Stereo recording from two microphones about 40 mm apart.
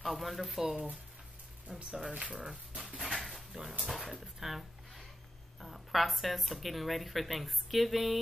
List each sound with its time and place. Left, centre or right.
0.0 s speech: centre
1.7 s speech: right
2.3 s speech: centre
3.2 s a sound: centre
3.9 s speech: centre